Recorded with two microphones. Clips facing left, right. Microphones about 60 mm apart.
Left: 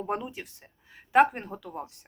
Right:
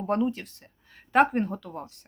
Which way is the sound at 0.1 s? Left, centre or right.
Centre.